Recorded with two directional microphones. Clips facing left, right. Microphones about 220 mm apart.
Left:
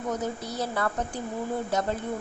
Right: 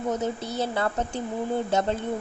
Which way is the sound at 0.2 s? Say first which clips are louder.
Right 3 dB; 25° right (ahead or behind).